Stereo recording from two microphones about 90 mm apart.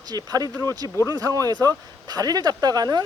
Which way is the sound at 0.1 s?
45° right (ahead or behind).